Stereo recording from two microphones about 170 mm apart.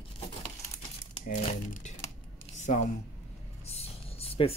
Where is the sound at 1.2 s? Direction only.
50° left (ahead or behind).